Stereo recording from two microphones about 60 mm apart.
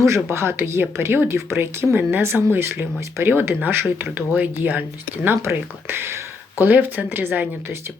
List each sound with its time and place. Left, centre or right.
0.0 s speech: right
5.4 s speech: right
6.7 s speech: right